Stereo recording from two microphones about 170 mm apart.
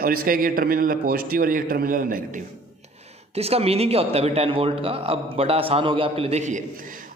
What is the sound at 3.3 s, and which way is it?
A man's voice, 35° right (ahead or behind).